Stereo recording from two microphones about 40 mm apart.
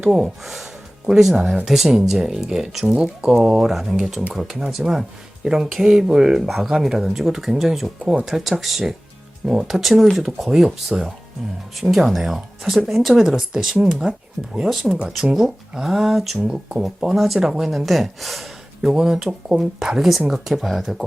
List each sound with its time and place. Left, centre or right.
0.0 s speech: centre
13.8 s speech: right
14.7 s speech: centre
17.5 s speech: centre
17.7 s speech: centre
18.8 s speech: centre
20.0 s speech: centre